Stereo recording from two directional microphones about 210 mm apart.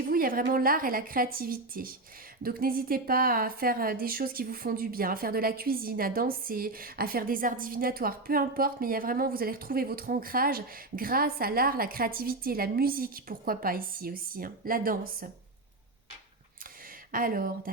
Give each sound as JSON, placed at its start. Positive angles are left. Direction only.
{"t": 0.1, "sound": "a woman's voice", "side_deg": -45}
{"t": 17.1, "sound": "speech", "side_deg": -40}